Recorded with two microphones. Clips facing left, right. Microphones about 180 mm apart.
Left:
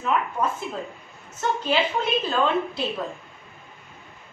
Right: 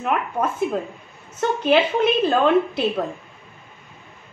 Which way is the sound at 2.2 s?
60° right (ahead or behind).